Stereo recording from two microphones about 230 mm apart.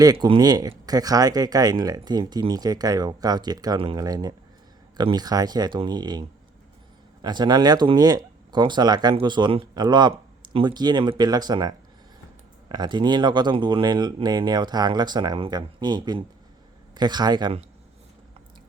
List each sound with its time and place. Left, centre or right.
0.0 s a man's voice: centre